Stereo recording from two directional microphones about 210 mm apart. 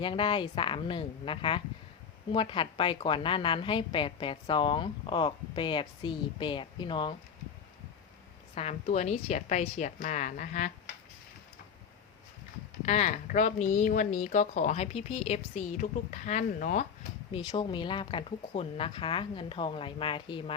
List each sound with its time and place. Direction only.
0.0 s a woman's voice: 25° left (ahead or behind)
8.5 s speech: 30° left (ahead or behind)
12.8 s speech: 35° left (ahead or behind)
17.3 s a woman's voice: 25° left (ahead or behind)